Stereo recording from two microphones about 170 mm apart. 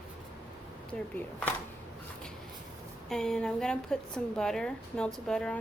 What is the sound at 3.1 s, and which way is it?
A woman's voice, 5° left (ahead or behind).